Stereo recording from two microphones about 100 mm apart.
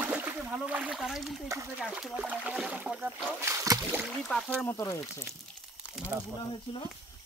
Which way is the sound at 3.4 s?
35° right (ahead or behind).